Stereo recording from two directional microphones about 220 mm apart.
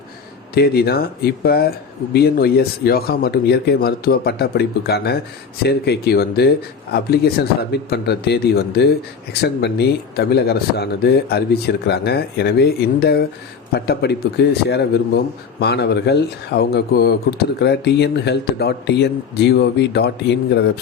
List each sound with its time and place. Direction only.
0.5 s speech: 45° left (ahead or behind)